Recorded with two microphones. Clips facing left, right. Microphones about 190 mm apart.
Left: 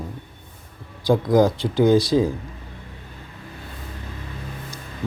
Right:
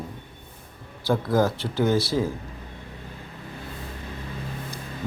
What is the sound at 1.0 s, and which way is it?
A man's voice, 15° left (ahead or behind).